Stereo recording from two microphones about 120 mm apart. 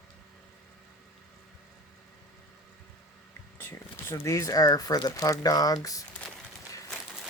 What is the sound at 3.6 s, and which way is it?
Speech, 20° left (ahead or behind).